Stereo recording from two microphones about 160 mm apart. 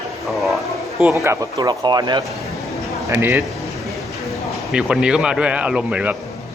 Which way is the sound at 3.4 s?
Centre (ahead or behind).